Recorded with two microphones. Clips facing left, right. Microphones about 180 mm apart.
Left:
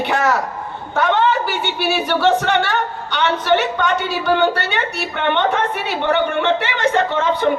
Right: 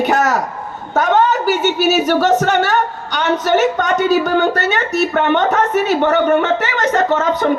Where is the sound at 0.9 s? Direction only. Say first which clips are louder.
Right 3 dB; 40° right (ahead or behind).